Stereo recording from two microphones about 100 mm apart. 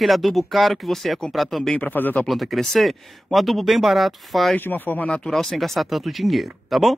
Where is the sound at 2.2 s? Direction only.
Centre (ahead or behind).